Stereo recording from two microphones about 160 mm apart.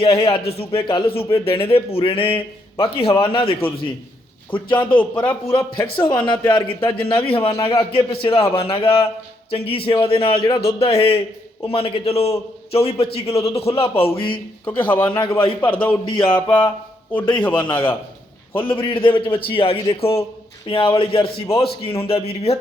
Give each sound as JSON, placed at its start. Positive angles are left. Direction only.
{"t": 0.0, "sound": "speech", "side_deg": 35}
{"t": 5.2, "sound": "a man's voice", "side_deg": 10}
{"t": 5.5, "sound": "a man's voice", "side_deg": 35}
{"t": 14.8, "sound": "a man's voice", "side_deg": 10}
{"t": 15.2, "sound": "speech", "side_deg": 30}
{"t": 15.6, "sound": "a man's voice", "side_deg": 10}
{"t": 17.7, "sound": "a man's voice", "side_deg": 30}